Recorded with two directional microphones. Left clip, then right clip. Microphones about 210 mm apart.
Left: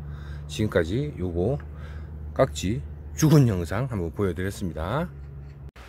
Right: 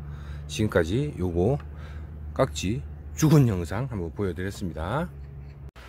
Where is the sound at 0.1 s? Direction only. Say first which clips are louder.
Right 2 dB; 5° right (ahead or behind).